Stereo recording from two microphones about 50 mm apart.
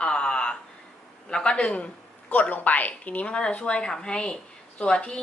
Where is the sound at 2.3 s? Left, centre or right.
Left.